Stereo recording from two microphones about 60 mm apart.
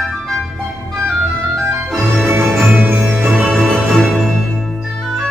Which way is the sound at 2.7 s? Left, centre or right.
Right.